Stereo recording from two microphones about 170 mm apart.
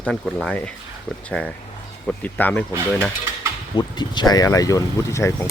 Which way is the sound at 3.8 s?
25° left (ahead or behind).